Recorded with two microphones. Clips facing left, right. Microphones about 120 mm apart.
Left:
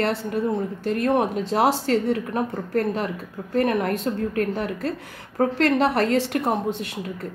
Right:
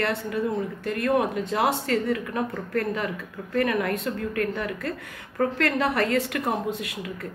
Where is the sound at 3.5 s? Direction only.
30° left (ahead or behind).